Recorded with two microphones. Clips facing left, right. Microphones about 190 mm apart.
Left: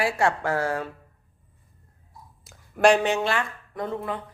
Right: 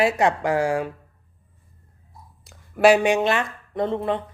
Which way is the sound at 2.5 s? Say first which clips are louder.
Right 3 dB; 5° right (ahead or behind).